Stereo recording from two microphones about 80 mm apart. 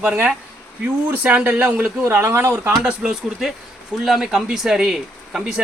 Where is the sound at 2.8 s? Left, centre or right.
Centre.